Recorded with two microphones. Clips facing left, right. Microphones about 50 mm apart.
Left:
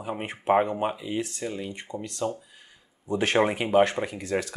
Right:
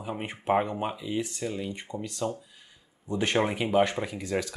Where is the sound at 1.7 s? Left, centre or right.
Centre.